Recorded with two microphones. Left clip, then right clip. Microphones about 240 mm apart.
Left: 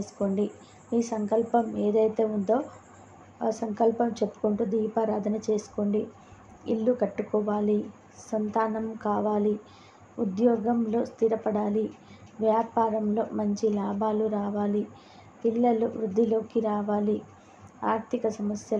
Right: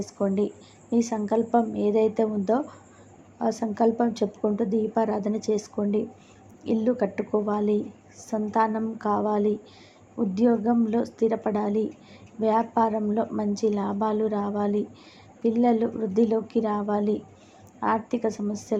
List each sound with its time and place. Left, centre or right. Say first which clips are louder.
0.0 s a woman's voice: right 3 dB; centre